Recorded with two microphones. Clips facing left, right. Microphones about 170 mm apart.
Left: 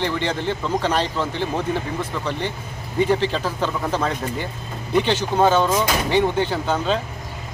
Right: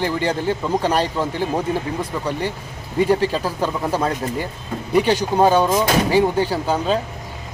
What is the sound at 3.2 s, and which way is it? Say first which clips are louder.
Speech: right 2 dB; 10° right (ahead or behind).